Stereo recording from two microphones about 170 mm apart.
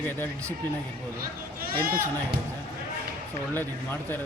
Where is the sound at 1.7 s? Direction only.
60° right (ahead or behind).